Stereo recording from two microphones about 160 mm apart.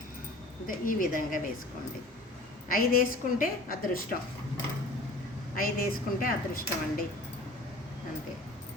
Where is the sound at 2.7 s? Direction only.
65° left (ahead or behind).